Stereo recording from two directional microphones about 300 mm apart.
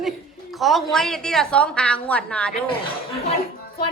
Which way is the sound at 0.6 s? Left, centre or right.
Centre.